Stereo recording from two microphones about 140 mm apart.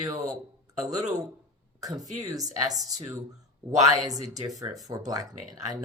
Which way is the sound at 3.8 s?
25° right (ahead or behind).